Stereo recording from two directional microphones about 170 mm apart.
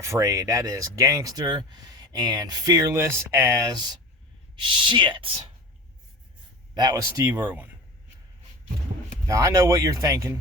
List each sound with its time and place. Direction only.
0.0 s speech: 20° right (ahead or behind)
6.7 s speech: 25° right (ahead or behind)
9.2 s speech: 15° right (ahead or behind)